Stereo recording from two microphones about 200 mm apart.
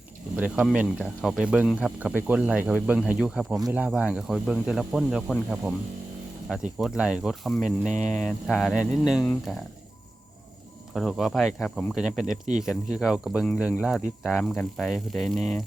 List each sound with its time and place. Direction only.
0.3 s speech: 5° right (ahead or behind)
6.7 s speech: 5° right (ahead or behind)
10.9 s speech: centre (ahead or behind)